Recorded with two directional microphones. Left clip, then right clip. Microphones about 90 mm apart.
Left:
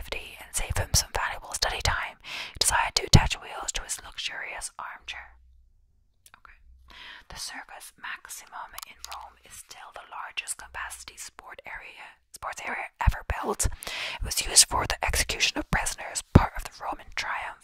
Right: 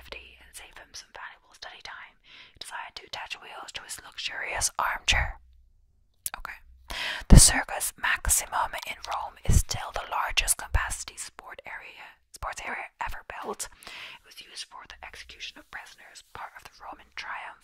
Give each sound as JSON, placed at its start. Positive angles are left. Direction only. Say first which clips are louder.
{"t": 0.1, "sound": "whispering", "louder": "left 9 dB", "side_deg": 20}
{"t": 0.7, "sound": "whispering", "louder": "left 17 dB", "side_deg": 45}
{"t": 3.3, "sound": "whispering", "louder": "left 5 dB", "side_deg": 10}
{"t": 3.9, "sound": "whispering", "louder": "left 1 dB", "side_deg": 0}
{"t": 4.6, "sound": "whispering", "louder": "right 10 dB", "side_deg": -25}
{"t": 6.3, "sound": "whispering", "louder": "right 13 dB", "side_deg": -40}
{"t": 14.2, "sound": "whispering", "louder": "left 19 dB", "side_deg": 40}
{"t": 16.4, "sound": "whispering", "louder": "left 9 dB", "side_deg": 20}